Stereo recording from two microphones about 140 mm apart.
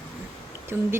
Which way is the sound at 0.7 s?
15° right (ahead or behind).